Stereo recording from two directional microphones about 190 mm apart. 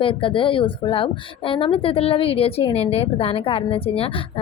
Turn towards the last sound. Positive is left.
turn(degrees=30)  # may be behind; listen again after turning